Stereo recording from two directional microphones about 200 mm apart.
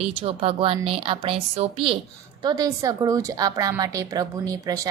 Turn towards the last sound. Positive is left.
turn(degrees=-15)  # may be behind; listen again after turning